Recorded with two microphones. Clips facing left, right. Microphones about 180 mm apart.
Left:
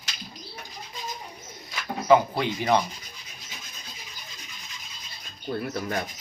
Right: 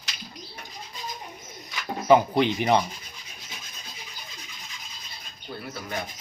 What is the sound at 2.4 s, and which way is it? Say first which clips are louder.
Speech: right 4 dB; 20° right (ahead or behind).